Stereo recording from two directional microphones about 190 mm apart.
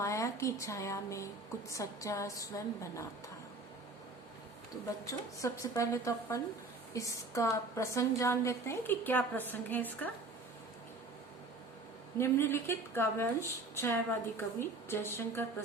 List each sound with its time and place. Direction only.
0.0 s a woman's voice: 15° left (ahead or behind)
5.4 s a woman's voice: 15° left (ahead or behind)
12.1 s a woman's voice: 15° left (ahead or behind)